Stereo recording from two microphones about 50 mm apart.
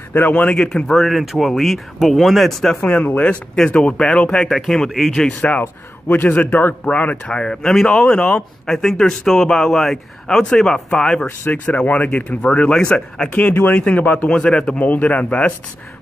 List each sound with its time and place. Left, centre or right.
0.1 s speech: left
0.6 s a man's voice: centre
1.1 s speech: centre
2.8 s speech: left
3.5 s a man's voice: centre
4.5 s a man's voice: centre
5.6 s a man's voice: left
7.2 s a man's voice: centre
8.6 s a man's voice: centre
11.5 s speech: left
14.8 s speech: left